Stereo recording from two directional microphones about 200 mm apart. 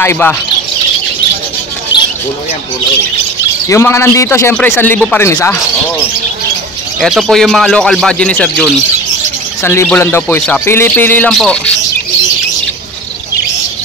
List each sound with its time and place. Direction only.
0.0 s speech: 10° left (ahead or behind)
1.9 s a sound: 25° left (ahead or behind)
3.6 s speech: 15° left (ahead or behind)
7.0 s a man's voice: centre (ahead or behind)